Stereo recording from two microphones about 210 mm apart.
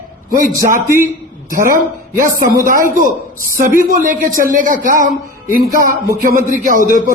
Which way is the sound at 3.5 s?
40° right (ahead or behind).